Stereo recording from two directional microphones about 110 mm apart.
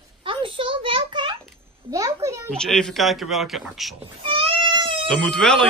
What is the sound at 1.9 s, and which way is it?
Speech, 30° right (ahead or behind).